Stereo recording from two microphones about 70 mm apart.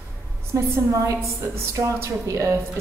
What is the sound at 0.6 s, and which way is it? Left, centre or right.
A woman's voice, right.